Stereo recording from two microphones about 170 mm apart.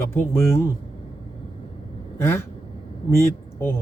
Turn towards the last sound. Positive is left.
turn(degrees=15)  # may be behind; listen again after turning